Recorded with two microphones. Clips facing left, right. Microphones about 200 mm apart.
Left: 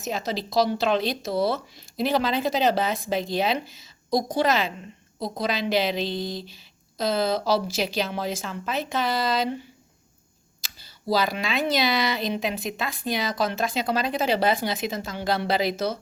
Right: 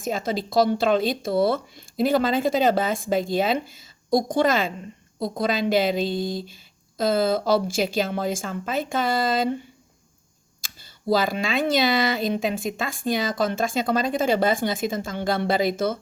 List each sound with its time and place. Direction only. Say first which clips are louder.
0.0 s speech: right 3 dB; 50° right (ahead or behind)
10.6 s speech: right 4 dB; 50° right (ahead or behind)